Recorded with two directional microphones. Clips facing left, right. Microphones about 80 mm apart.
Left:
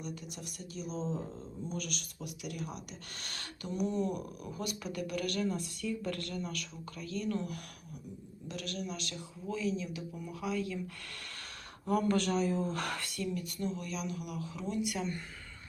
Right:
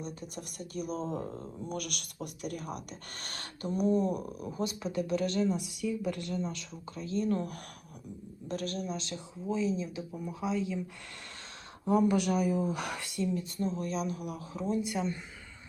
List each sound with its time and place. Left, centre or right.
0.0 s speech: right
11.9 s speech: centre